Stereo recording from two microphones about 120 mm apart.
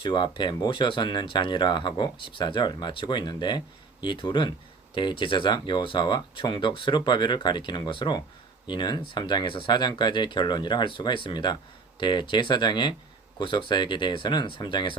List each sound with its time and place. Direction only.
0.0 s speech: 40° left (ahead or behind)